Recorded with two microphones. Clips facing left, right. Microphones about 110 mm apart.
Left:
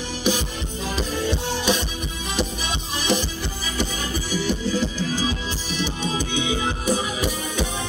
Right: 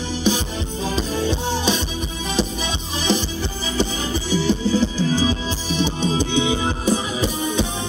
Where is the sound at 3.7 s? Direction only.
25° right (ahead or behind).